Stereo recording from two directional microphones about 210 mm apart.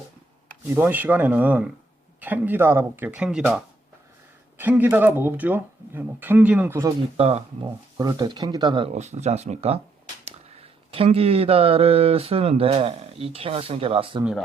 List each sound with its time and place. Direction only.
0.7 s speech: 10° right (ahead or behind)
7.2 s speech: 30° right (ahead or behind)
7.6 s speech: 20° right (ahead or behind)